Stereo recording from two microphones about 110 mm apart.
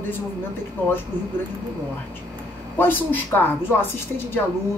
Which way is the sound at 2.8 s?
20° left (ahead or behind).